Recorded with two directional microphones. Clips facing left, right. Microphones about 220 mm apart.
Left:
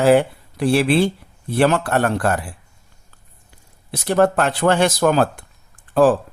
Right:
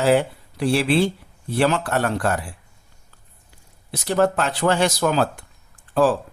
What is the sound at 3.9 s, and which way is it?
Speech, 55° left (ahead or behind).